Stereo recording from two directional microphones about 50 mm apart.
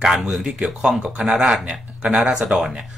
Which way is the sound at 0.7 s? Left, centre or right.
Right.